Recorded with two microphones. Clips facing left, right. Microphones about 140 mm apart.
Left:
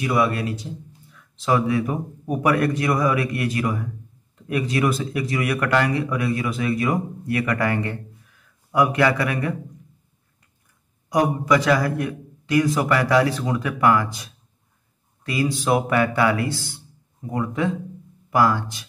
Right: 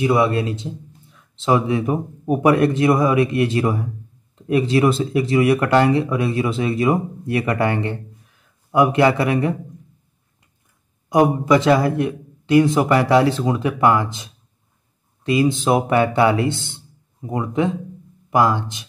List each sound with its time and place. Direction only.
0.0 s speech: 25° right (ahead or behind)
11.1 s speech: 25° right (ahead or behind)